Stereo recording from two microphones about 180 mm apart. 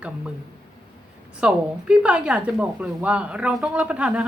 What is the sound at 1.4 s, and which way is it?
Speech, 5° right (ahead or behind).